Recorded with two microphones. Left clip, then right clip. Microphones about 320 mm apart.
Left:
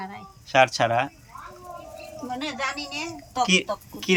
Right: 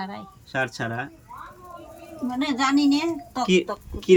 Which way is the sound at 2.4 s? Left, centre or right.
Right.